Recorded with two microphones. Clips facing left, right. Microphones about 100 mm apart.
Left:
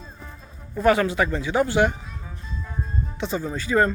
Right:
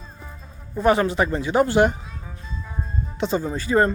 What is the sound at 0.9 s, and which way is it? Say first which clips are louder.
Speech: right 1 dB; 30° right (ahead or behind).